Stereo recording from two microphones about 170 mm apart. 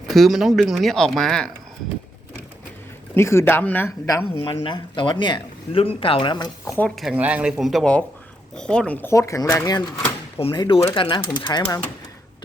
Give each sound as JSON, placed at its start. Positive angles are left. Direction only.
{"t": 0.1, "sound": "speech", "side_deg": 0}
{"t": 3.2, "sound": "speech", "side_deg": 15}
{"t": 4.4, "sound": "speech", "side_deg": 30}
{"t": 6.7, "sound": "speech", "side_deg": 5}
{"t": 10.3, "sound": "speech", "side_deg": 30}